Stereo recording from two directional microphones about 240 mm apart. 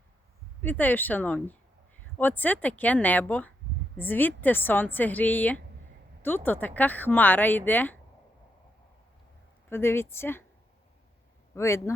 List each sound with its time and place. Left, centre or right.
0.6 s speech: centre
9.6 s speech: centre
11.5 s speech: centre